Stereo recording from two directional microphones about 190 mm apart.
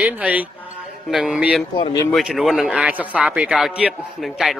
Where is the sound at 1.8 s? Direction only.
25° left (ahead or behind).